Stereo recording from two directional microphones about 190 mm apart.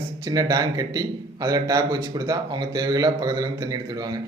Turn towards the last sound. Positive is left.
turn(degrees=-20)  # may be behind; listen again after turning